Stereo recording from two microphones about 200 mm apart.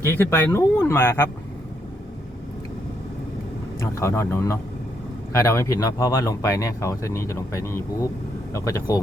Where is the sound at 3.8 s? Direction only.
15° left (ahead or behind).